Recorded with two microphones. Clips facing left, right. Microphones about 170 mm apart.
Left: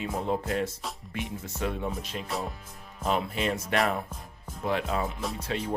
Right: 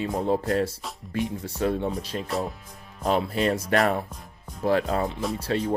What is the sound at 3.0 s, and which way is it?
Speech, 35° right (ahead or behind).